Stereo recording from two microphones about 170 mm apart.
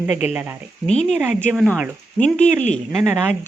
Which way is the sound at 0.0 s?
10° right (ahead or behind).